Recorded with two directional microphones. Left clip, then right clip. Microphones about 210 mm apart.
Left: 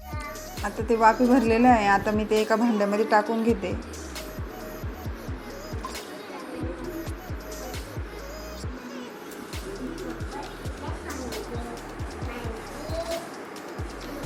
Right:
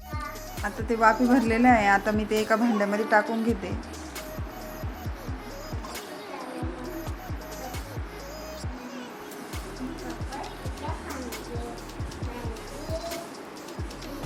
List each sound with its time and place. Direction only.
0.6 s a woman's voice: centre (ahead or behind)